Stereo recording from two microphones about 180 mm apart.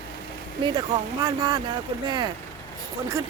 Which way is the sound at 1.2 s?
20° right (ahead or behind).